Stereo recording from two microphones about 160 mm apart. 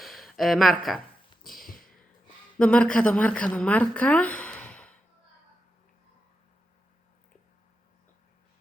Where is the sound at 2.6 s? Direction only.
5° left (ahead or behind).